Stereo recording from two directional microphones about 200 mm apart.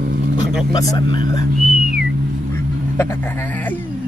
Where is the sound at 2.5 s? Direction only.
10° left (ahead or behind).